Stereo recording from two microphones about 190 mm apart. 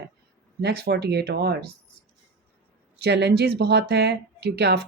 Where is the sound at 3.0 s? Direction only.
60° right (ahead or behind).